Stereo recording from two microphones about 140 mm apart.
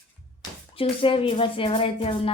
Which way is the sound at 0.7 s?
40° left (ahead or behind).